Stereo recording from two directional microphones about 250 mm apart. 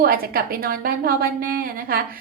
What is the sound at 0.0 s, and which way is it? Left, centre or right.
A woman's voice, right.